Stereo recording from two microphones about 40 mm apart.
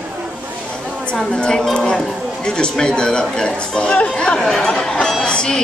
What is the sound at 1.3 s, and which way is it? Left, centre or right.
A woman's voice, centre.